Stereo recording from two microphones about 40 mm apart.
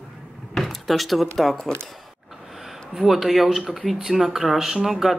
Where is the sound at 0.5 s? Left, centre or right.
Centre.